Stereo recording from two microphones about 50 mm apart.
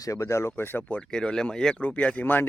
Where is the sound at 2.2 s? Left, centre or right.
Left.